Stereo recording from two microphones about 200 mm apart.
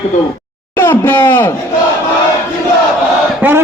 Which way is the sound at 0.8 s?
10° left (ahead or behind).